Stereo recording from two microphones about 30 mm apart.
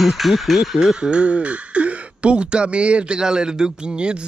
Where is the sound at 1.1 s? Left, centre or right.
Right.